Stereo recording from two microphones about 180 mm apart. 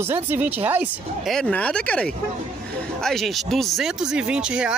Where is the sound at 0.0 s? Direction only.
10° right (ahead or behind).